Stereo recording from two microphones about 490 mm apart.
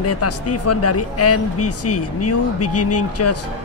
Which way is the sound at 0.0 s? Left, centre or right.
Left.